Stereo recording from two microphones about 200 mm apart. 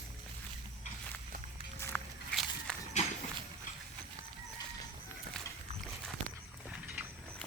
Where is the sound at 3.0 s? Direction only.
35° left (ahead or behind).